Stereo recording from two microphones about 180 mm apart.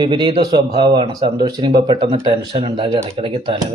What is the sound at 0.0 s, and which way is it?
A man's voice, 25° right (ahead or behind).